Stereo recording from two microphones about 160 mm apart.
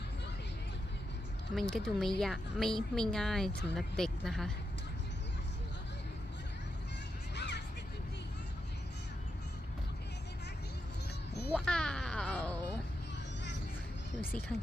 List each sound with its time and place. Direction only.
1.5 s speech: 5° left (ahead or behind)
7.3 s music: 90° left
11.5 s music: 5° left (ahead or behind)